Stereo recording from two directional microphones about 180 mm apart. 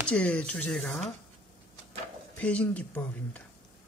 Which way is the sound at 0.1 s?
5° left (ahead or behind).